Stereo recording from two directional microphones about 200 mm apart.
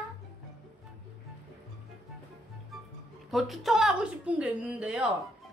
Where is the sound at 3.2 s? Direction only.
Centre (ahead or behind).